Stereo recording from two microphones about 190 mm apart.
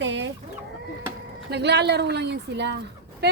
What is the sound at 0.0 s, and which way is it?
Speech, 70° right (ahead or behind).